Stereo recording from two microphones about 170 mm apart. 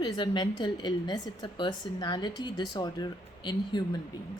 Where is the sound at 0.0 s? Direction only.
25° left (ahead or behind).